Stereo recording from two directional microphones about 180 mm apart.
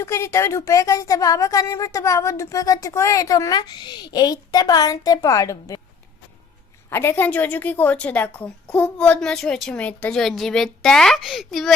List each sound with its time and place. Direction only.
0.0 s a woman's voice: 15° left (ahead or behind)
6.9 s a woman's voice: 15° left (ahead or behind)